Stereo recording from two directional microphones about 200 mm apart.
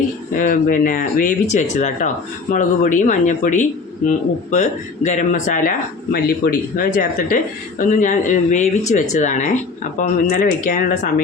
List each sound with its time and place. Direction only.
0.3 s speech: 40° left (ahead or behind)